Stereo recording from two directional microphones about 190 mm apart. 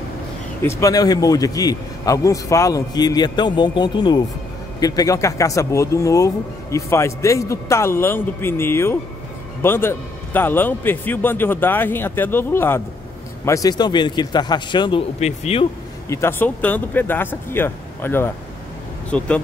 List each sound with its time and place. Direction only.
0.7 s a man's voice: 15° left (ahead or behind)
15.1 s speech: 35° left (ahead or behind)
16.1 s speech: 15° left (ahead or behind)